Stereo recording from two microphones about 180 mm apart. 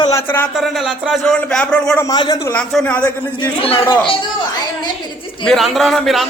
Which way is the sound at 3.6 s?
30° left (ahead or behind).